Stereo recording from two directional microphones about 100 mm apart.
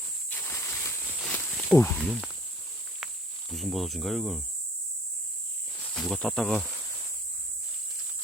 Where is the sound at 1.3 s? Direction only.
10° left (ahead or behind).